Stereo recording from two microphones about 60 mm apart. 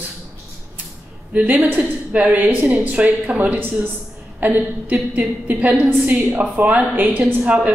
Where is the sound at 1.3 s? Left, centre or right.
Right.